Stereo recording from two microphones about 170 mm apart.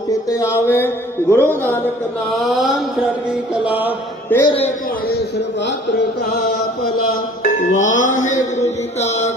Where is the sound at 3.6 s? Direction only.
10° right (ahead or behind).